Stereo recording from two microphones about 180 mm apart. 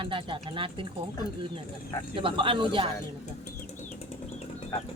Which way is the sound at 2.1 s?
30° right (ahead or behind).